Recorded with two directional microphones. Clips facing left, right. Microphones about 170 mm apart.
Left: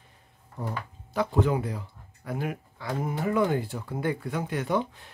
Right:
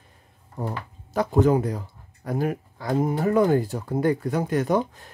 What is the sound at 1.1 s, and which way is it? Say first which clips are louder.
Speech: right 6 dB; 40° right (ahead or behind).